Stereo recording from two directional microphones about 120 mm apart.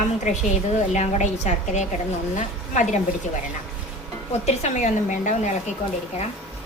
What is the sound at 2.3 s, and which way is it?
Speech, 90° left.